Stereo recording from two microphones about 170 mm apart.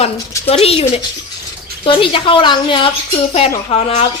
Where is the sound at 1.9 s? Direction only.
30° left (ahead or behind).